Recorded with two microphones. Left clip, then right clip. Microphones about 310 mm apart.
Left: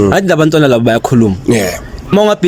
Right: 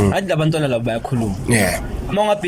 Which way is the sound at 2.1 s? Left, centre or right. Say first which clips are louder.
Left 7 dB; left.